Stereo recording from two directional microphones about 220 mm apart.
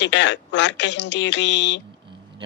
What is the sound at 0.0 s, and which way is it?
Speech, 55° left (ahead or behind).